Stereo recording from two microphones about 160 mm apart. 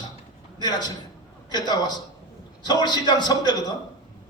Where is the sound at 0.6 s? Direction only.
25° left (ahead or behind).